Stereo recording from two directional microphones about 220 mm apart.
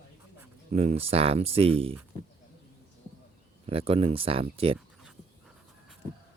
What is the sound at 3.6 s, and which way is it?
Speech, 25° right (ahead or behind).